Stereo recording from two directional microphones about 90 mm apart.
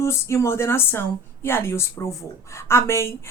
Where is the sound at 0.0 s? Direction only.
30° left (ahead or behind).